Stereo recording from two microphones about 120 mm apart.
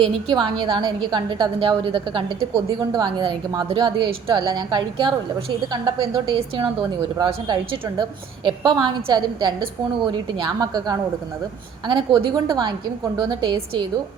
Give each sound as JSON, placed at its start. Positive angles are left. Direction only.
{"t": 0.0, "sound": "a woman's voice", "side_deg": -45}
{"t": 2.6, "sound": "a woman's voice", "side_deg": -35}